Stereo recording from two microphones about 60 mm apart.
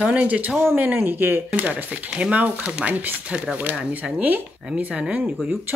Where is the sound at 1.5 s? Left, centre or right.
Right.